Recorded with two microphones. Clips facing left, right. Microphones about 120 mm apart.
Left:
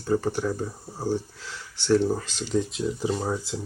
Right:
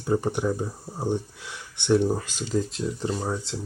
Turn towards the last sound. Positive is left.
turn(degrees=0)  # may be behind; listen again after turning